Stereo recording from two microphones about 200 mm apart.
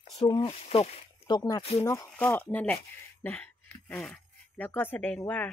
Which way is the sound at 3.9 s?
5° left (ahead or behind).